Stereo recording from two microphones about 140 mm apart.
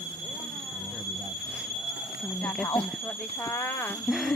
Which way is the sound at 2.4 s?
10° left (ahead or behind).